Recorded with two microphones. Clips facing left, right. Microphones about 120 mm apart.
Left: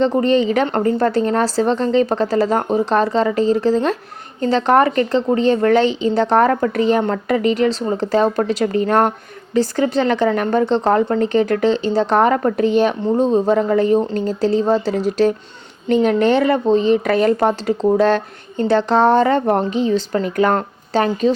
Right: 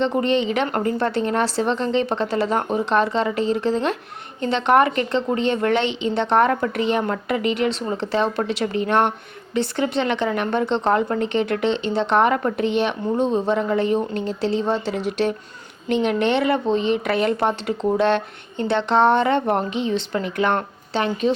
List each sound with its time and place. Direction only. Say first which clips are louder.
0.0 s a woman's voice: left 5 dB; 35° left (ahead or behind)